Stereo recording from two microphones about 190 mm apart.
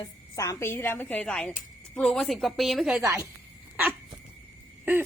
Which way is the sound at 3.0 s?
15° right (ahead or behind).